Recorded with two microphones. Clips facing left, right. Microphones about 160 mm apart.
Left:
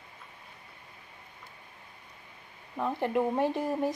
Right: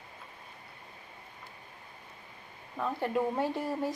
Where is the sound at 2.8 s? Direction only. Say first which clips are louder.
Left 2 dB; 20° left (ahead or behind).